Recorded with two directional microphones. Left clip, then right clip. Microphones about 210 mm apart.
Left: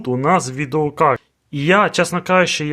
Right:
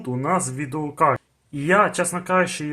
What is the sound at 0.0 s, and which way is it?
Speech, 50° left (ahead or behind).